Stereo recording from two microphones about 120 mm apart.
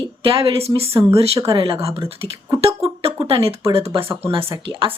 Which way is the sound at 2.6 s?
55° right (ahead or behind).